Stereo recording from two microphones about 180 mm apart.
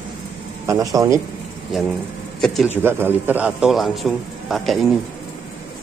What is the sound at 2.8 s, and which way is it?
A man's voice, 10° right (ahead or behind).